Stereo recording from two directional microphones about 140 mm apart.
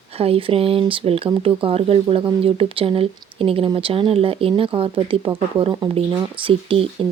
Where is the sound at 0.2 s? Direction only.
40° right (ahead or behind).